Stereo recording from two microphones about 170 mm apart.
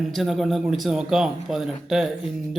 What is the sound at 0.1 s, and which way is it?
Speech, centre (ahead or behind).